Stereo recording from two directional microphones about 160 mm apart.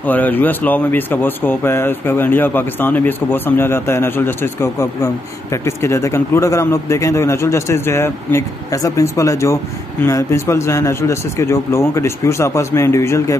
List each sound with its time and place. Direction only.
0.0 s speech: 10° left (ahead or behind)